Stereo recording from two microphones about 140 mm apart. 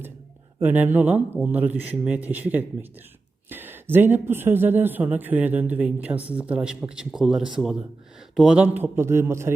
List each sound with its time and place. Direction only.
0.6 s a man's voice: 10° right (ahead or behind)